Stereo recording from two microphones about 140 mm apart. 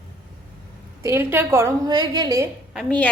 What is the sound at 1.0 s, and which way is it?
A woman's voice, 15° right (ahead or behind).